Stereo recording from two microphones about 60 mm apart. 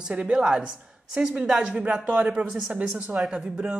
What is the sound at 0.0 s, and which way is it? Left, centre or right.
A woman's voice, centre.